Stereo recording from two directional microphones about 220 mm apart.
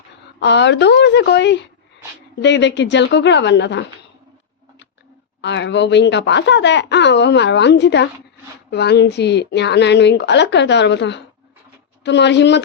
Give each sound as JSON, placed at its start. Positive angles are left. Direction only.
{"t": 0.3, "sound": "speech", "side_deg": 50}
{"t": 5.4, "sound": "speech", "side_deg": 55}